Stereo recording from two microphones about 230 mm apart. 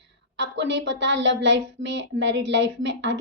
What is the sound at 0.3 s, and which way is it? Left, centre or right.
A woman's voice, right.